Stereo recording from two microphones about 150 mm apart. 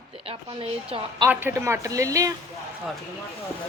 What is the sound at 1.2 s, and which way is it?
Speech, 15° right (ahead or behind).